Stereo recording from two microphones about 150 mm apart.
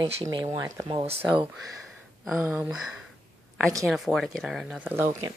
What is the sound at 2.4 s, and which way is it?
Speech, 10° right (ahead or behind).